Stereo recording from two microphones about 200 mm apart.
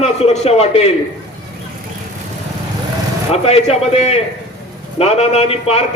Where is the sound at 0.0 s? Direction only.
30° left (ahead or behind).